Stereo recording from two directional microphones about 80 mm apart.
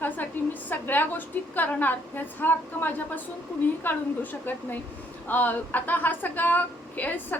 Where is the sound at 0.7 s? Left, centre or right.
Left.